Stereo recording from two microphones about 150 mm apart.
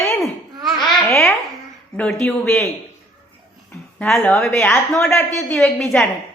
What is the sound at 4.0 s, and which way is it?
A woman's voice, 5° left (ahead or behind).